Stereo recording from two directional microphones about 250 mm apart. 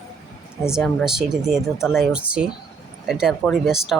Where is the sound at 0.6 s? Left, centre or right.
Centre.